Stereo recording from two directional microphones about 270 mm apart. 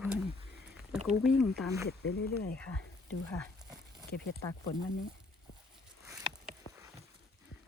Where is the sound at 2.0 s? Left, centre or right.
Left.